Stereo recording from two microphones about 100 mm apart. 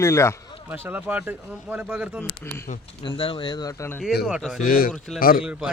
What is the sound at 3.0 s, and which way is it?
Speech, 55° left (ahead or behind).